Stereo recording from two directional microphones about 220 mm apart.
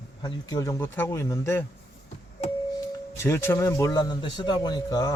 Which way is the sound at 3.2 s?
10° left (ahead or behind).